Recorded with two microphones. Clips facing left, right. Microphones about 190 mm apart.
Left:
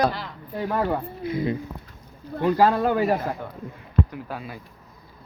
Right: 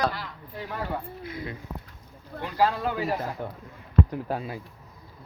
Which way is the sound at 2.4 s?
45° left (ahead or behind).